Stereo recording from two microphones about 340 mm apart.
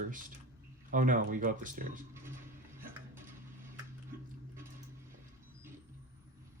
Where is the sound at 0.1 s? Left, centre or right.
Right.